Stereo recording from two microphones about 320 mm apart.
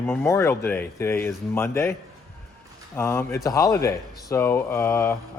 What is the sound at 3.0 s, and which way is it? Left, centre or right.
A man's voice, centre.